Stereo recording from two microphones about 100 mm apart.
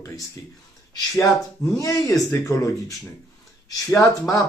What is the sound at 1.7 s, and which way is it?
Speech, 30° left (ahead or behind).